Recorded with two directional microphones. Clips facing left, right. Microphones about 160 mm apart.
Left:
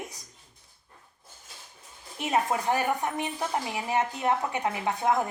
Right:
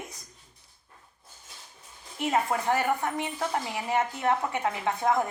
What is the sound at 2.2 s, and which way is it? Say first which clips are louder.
A woman's voice: even; 20° left (ahead or behind).